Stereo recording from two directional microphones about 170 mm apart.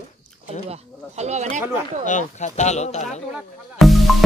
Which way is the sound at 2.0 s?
45° left (ahead or behind).